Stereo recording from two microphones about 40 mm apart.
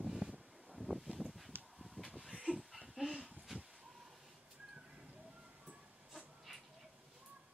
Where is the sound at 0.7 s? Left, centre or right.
Centre.